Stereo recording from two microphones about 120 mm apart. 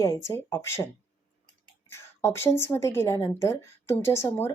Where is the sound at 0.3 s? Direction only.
20° left (ahead or behind).